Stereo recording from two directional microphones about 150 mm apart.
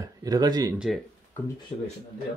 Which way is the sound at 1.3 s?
15° left (ahead or behind).